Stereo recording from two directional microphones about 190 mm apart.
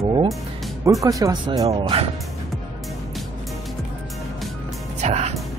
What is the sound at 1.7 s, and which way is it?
Speech, 30° right (ahead or behind).